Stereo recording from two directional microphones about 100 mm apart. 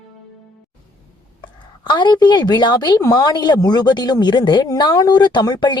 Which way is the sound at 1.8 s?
50° left (ahead or behind).